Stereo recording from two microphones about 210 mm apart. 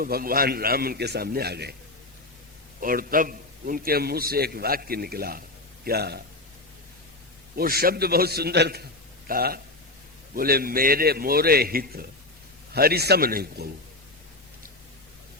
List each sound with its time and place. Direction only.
0.0 s a man's voice: 45° right (ahead or behind)
2.8 s a man's voice: 45° right (ahead or behind)
7.5 s a man's voice: 45° right (ahead or behind)